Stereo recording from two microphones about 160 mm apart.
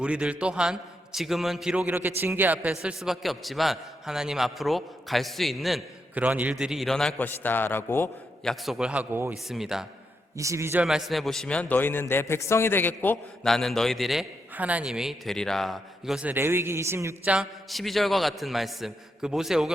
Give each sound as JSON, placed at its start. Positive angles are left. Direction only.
{"t": 0.0, "sound": "a man's voice", "side_deg": -5}
{"t": 2.8, "sound": "a man's voice", "side_deg": 0}
{"t": 8.6, "sound": "a man's voice", "side_deg": -5}
{"t": 10.3, "sound": "a man's voice", "side_deg": -20}
{"t": 10.8, "sound": "a man's voice", "side_deg": 0}
{"t": 17.3, "sound": "a man's voice", "side_deg": 0}